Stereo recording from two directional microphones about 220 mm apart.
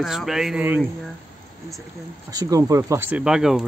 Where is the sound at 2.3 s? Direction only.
15° right (ahead or behind).